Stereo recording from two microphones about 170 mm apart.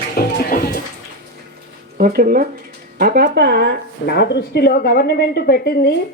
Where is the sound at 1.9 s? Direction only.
60° right (ahead or behind); by 3.7 s 80° right.